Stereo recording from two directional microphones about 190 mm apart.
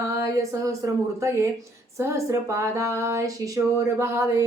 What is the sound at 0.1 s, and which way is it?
Speech, 15° right (ahead or behind).